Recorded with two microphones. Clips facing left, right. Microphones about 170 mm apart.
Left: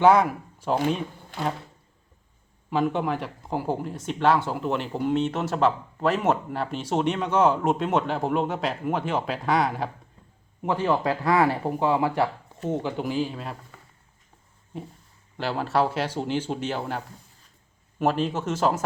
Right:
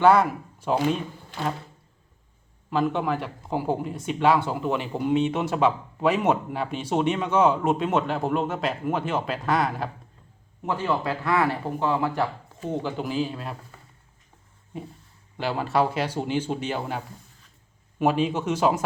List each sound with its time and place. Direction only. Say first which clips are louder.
0.0 s speech: even; centre (ahead or behind)
2.6 s speech: even; centre (ahead or behind)
11.0 s speech: left 2 dB; 35° left (ahead or behind)
11.9 s speech: left 1 dB; 15° left (ahead or behind)
12.6 s speech: left 1 dB; centre (ahead or behind)
15.4 s speech: even; 5° right (ahead or behind)
18.0 s speech: right 1 dB; 5° right (ahead or behind)